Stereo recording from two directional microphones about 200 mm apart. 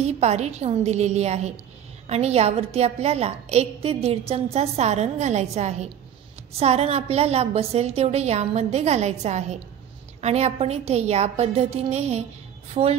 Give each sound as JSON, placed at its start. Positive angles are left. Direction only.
{"t": 0.0, "sound": "a woman's voice", "side_deg": -35}